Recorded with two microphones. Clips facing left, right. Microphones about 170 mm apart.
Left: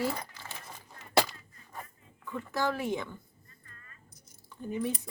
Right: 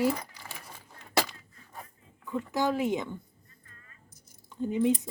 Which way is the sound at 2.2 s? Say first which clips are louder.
Right 3 dB; 15° right (ahead or behind).